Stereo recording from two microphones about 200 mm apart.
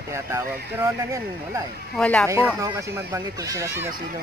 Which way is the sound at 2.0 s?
5° left (ahead or behind).